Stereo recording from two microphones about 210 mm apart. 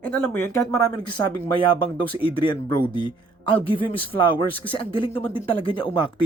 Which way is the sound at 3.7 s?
25° left (ahead or behind).